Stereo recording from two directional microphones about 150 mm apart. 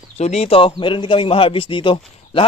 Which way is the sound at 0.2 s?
45° left (ahead or behind).